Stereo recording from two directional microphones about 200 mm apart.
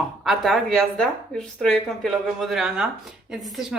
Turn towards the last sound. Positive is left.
turn(degrees=0)  # may be behind; listen again after turning